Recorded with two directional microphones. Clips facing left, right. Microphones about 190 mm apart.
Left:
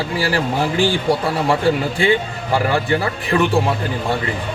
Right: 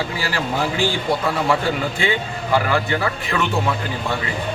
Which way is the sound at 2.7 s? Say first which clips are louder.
Left 2 dB; 35° left (ahead or behind).